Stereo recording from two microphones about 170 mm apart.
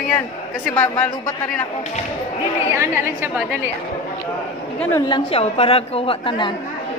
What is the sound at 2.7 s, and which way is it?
Speech, 15° right (ahead or behind).